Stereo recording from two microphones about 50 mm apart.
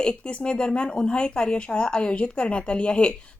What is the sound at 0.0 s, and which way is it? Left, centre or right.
Speech, left.